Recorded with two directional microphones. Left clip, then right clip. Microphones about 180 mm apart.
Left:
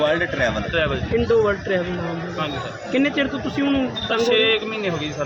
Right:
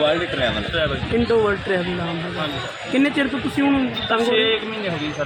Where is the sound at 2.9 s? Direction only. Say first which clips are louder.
Right 1 dB; 55° right (ahead or behind).